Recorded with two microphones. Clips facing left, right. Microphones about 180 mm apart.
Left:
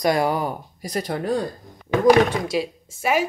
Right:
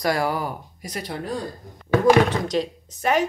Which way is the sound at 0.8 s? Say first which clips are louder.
Left 6 dB; 40° left (ahead or behind).